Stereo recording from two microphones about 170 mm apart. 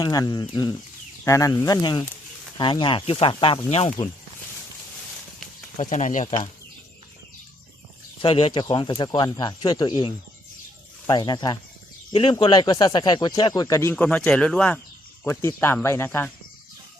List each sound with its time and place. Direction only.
0.0 s speech: 25° left (ahead or behind); by 3.9 s 40° left (ahead or behind)
5.7 s speech: 45° left (ahead or behind)
8.2 s speech: 35° left (ahead or behind); by 16.3 s 15° left (ahead or behind)